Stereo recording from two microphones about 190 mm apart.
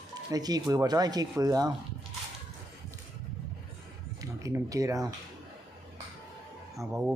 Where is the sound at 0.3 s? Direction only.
20° right (ahead or behind).